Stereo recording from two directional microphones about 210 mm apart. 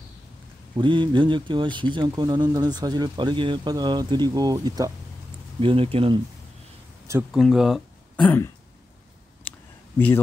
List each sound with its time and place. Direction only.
0.7 s speech: 25° right (ahead or behind)
7.3 s speech: centre (ahead or behind)
9.5 s a sound: 10° left (ahead or behind)
9.9 s speech: 10° left (ahead or behind)